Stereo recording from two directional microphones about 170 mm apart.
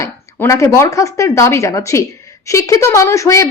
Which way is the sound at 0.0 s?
15° left (ahead or behind).